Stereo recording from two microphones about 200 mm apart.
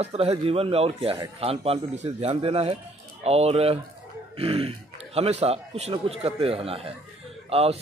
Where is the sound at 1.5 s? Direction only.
30° right (ahead or behind).